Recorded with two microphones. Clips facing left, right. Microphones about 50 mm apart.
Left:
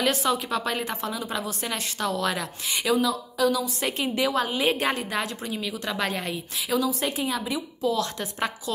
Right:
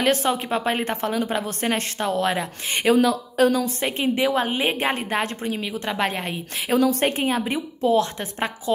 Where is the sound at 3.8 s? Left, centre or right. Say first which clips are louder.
Right 3 dB; right.